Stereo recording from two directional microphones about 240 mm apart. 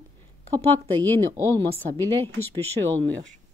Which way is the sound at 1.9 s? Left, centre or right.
Centre.